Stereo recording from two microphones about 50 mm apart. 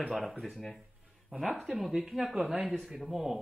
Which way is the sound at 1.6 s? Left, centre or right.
Centre.